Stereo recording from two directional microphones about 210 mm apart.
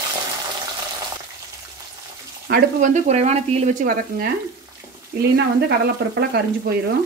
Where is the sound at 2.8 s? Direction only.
35° right (ahead or behind).